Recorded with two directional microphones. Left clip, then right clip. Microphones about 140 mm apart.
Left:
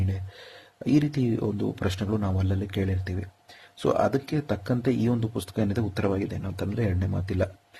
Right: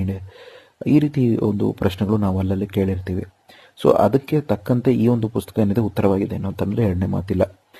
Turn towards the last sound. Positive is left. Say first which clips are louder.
# right 8 dB
turn(degrees=-45)  # may be behind; listen again after turning